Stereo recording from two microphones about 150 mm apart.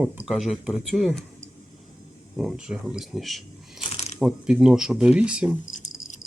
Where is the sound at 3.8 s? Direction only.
45° left (ahead or behind).